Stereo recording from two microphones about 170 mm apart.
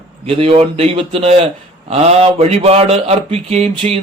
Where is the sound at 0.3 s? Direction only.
35° right (ahead or behind).